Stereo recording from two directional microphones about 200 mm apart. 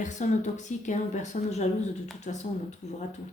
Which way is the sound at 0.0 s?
35° left (ahead or behind).